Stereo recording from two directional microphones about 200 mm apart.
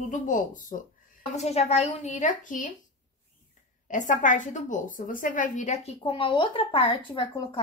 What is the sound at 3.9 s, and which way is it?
A woman's voice, 40° left (ahead or behind).